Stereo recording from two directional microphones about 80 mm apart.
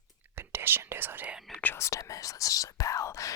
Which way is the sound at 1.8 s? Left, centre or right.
Left.